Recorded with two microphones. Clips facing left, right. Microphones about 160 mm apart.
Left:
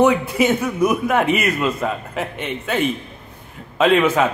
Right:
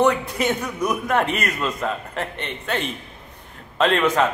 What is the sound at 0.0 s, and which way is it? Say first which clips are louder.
A man's voice: left 4 dB; 5° left (ahead or behind).